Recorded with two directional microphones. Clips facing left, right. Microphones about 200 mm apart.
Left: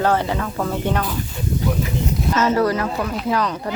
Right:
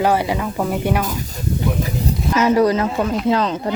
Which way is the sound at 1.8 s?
35° right (ahead or behind).